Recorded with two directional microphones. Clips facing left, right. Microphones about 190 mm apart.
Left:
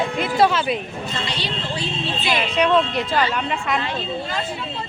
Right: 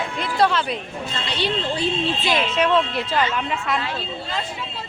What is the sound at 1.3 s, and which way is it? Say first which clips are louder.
Speech: right 4 dB; 55° right (ahead or behind).